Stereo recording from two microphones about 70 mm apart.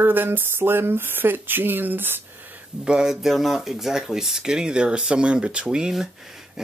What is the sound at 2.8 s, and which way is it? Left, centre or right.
Speech, centre.